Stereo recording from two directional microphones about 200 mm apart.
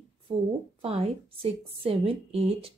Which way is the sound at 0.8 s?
30° right (ahead or behind).